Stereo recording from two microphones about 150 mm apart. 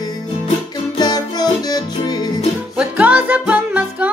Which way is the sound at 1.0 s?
25° left (ahead or behind).